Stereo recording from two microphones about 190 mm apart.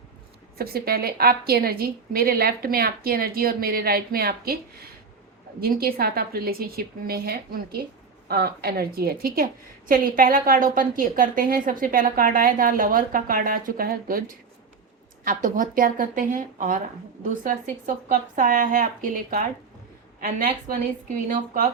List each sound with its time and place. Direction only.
0.6 s a woman's voice: 55° right (ahead or behind)